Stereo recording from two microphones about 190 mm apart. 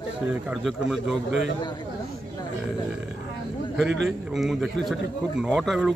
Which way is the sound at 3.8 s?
65° right (ahead or behind).